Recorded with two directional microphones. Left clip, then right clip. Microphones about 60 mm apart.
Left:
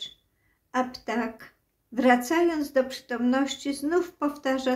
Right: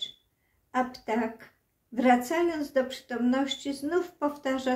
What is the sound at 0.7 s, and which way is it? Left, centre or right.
Speech, left.